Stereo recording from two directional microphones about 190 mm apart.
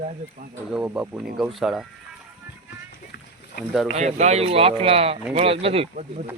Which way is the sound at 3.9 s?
35° right (ahead or behind).